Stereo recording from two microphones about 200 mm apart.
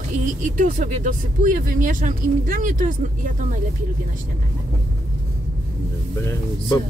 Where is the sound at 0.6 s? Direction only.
40° right (ahead or behind).